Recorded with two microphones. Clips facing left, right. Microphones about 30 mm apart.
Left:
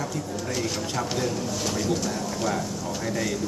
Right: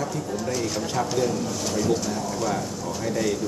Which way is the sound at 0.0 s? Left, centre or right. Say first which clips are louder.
Right 3 dB; centre.